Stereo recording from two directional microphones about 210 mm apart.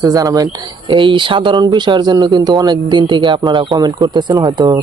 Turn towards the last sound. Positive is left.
turn(degrees=-20)  # may be behind; listen again after turning